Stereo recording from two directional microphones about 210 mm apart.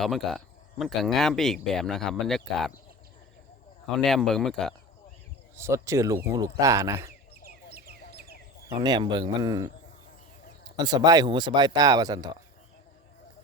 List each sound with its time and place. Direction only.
0.0 s speech: centre (ahead or behind)
3.9 s speech: centre (ahead or behind)
5.5 s speech: 10° right (ahead or behind)
7.4 s bird: 45° right (ahead or behind)
8.8 s speech: 20° right (ahead or behind)
10.8 s speech: 20° right (ahead or behind)